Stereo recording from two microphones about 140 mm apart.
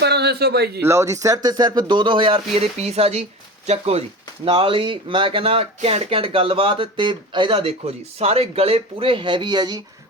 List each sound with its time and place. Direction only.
0.8 s speech: 20° right (ahead or behind)